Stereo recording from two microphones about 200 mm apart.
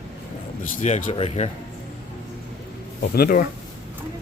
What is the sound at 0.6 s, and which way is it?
Speech, 40° left (ahead or behind).